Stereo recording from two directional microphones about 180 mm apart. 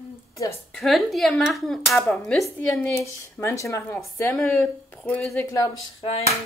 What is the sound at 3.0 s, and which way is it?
Speech, 15° left (ahead or behind).